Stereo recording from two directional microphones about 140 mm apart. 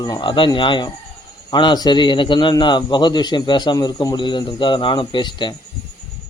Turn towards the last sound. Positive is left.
turn(degrees=35)  # may be behind; listen again after turning